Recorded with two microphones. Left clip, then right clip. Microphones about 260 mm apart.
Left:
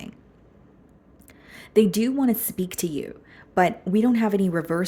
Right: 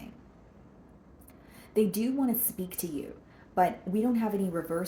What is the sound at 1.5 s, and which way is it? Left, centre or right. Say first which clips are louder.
Speech: left 8 dB; left.